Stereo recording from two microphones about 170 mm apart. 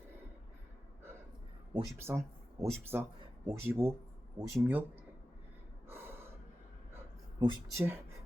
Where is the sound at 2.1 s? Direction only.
10° right (ahead or behind).